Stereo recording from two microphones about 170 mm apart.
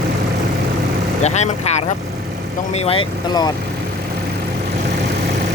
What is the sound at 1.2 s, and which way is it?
Speech, 40° left (ahead or behind).